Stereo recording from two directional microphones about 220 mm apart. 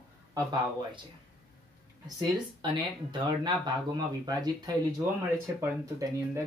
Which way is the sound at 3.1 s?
20° right (ahead or behind).